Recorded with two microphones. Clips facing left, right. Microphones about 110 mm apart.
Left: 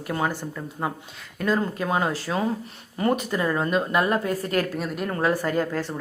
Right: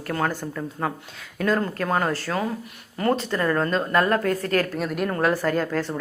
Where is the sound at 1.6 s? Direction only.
10° left (ahead or behind).